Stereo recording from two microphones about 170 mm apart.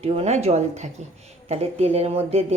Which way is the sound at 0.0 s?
40° right (ahead or behind).